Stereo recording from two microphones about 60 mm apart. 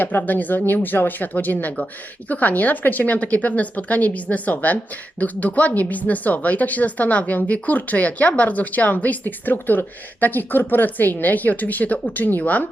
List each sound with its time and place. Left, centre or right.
0.0 s a woman's voice: left